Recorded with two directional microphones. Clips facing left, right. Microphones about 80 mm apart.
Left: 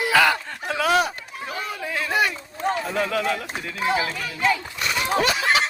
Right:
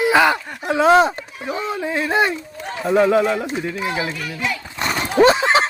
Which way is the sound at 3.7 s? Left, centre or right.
Centre.